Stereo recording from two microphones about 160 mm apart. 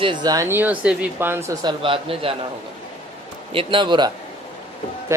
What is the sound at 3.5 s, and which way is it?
Speech, 35° right (ahead or behind).